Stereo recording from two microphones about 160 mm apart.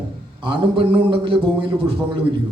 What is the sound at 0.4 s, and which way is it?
A man's voice, 30° right (ahead or behind).